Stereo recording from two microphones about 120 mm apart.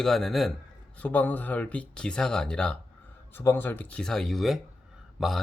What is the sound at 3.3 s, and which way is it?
Speech, 20° left (ahead or behind).